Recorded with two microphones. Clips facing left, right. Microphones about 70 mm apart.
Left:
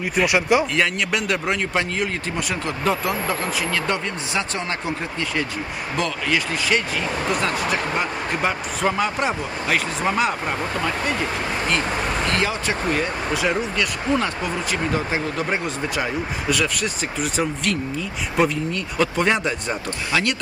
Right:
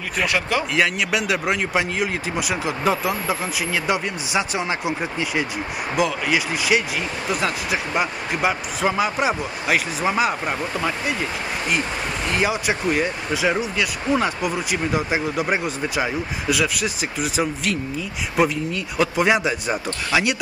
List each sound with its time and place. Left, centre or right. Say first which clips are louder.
0.2 s speech: left 4 dB; centre
0.7 s speech: right 1 dB; centre
12.3 s speech: right 1 dB; centre